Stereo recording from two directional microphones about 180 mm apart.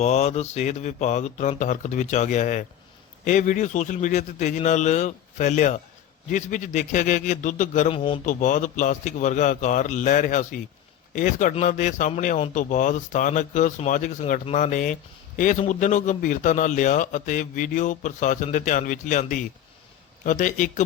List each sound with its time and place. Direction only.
0.0 s a man's voice: 40° left (ahead or behind)
8.2 s a man's voice: 45° left (ahead or behind)